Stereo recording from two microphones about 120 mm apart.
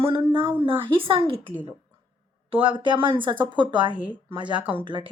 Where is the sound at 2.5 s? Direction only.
45° right (ahead or behind).